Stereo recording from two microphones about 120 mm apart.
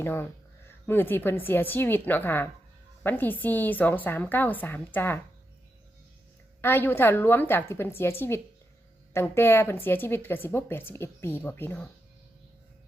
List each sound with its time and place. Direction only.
0.0 s a woman's voice: 20° left (ahead or behind)
6.6 s a woman's voice: 20° left (ahead or behind)